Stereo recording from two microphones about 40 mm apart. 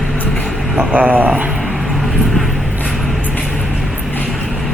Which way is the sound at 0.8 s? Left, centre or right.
Right.